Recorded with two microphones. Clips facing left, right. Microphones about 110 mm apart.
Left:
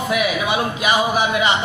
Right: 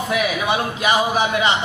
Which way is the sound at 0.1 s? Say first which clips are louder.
Even; 30° right (ahead or behind).